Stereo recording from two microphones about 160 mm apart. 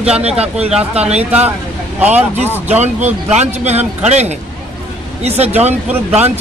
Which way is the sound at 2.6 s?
45° right (ahead or behind).